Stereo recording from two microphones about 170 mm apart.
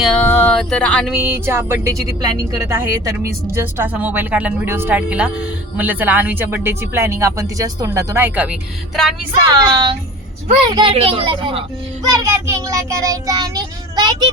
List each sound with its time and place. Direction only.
0.0 s speech: 5° left (ahead or behind)
1.2 s speech: 15° right (ahead or behind)
9.6 s child singing: 25° right (ahead or behind)
10.7 s speech: 30° right (ahead or behind)
12.0 s child singing: 15° right (ahead or behind)